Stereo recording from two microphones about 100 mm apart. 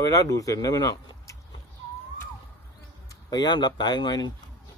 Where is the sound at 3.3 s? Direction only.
45° left (ahead or behind).